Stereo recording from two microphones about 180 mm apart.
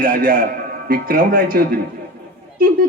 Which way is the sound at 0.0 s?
50° right (ahead or behind).